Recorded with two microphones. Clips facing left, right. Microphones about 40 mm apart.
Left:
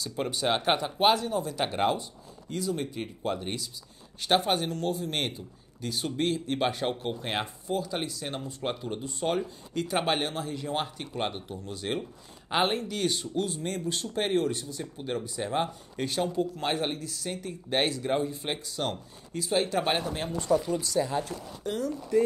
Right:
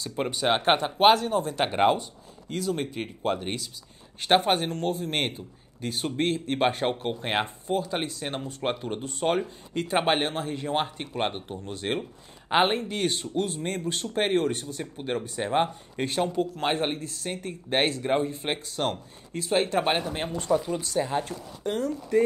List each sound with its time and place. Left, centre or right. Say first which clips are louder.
0.3 s speech: right 4 dB; right
2.5 s speech: right 2 dB; right
12.0 s speech: right 2 dB; right
20.3 s speech: even; right